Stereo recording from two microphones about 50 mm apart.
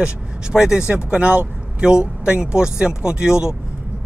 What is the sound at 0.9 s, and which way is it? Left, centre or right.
Speech, right.